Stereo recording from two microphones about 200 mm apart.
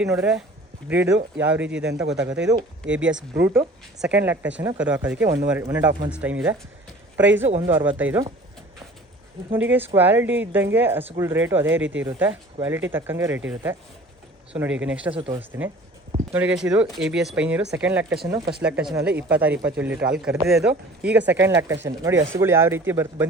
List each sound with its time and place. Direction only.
0.0 s speech: 5° right (ahead or behind)
9.5 s speech: 10° right (ahead or behind)
15.1 s speech: 25° right (ahead or behind)
15.4 s speech: 10° right (ahead or behind)
18.6 s speech: 5° right (ahead or behind)